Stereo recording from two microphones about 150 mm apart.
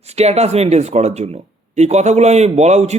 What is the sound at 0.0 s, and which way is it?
Speech, 45° right (ahead or behind).